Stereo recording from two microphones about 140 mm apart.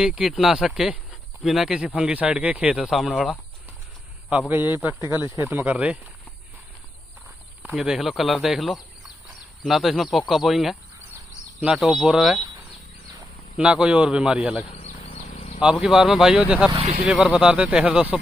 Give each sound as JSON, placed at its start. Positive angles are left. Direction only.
{"t": 0.0, "sound": "speech", "side_deg": -5}
{"t": 7.7, "sound": "speech", "side_deg": -5}
{"t": 13.6, "sound": "speech", "side_deg": -5}
{"t": 14.8, "sound": "insect", "side_deg": 60}
{"t": 15.6, "sound": "speech", "side_deg": -5}